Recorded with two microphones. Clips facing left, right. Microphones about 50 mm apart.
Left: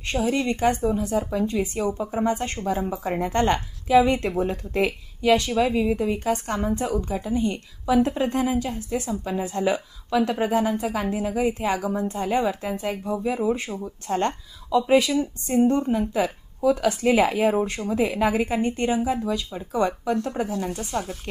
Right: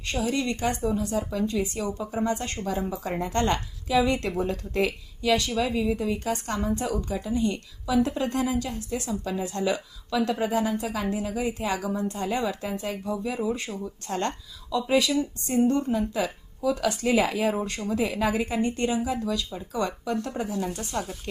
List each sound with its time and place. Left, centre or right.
0.1 s a woman's voice: left
20.9 s speech: left